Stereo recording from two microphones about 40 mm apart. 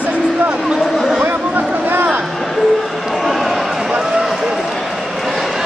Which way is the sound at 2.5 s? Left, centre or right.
Centre.